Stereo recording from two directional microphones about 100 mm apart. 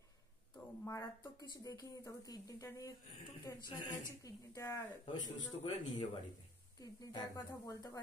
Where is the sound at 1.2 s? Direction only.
35° left (ahead or behind).